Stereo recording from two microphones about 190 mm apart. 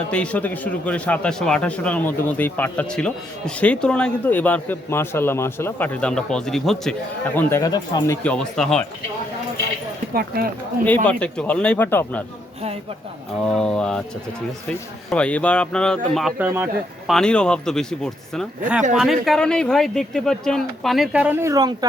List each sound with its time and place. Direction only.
0.1 s a man's voice: 5° left (ahead or behind)
7.3 s a man's voice: 15° left (ahead or behind)
10.2 s speech: 50° right (ahead or behind)
11.0 s a man's voice: 5° left (ahead or behind)
13.4 s speech: 5° left (ahead or behind)
15.1 s speech: 5° left (ahead or behind); by 21.8 s 20° right (ahead or behind)